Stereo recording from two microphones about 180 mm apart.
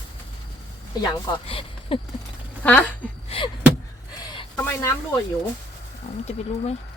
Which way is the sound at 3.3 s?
30° left (ahead or behind).